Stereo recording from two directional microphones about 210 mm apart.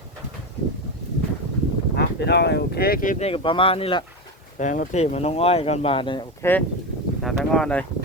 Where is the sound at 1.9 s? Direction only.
50° left (ahead or behind); by 4.0 s 25° left (ahead or behind).